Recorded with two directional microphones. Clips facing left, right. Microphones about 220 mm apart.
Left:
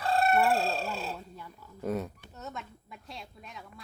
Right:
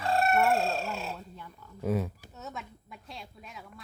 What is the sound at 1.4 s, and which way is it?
Speech, 10° left (ahead or behind).